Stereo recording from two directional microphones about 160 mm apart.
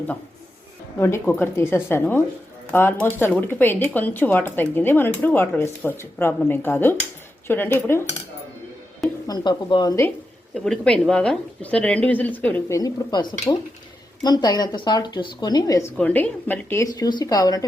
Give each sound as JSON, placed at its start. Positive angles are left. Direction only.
{"t": 0.9, "sound": "speech", "side_deg": 15}
{"t": 9.2, "sound": "a woman's voice", "side_deg": 25}
{"t": 10.5, "sound": "a woman's voice", "side_deg": 5}
{"t": 16.0, "sound": "a woman's voice", "side_deg": 10}